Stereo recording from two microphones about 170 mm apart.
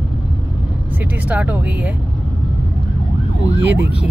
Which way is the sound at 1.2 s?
10° right (ahead or behind).